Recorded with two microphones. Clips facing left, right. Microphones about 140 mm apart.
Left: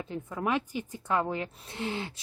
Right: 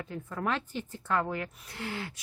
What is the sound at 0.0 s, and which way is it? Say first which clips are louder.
A woman's voice: left 2 dB; 20° left (ahead or behind).